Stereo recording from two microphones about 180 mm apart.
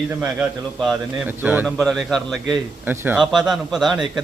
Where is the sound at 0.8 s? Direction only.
5° right (ahead or behind).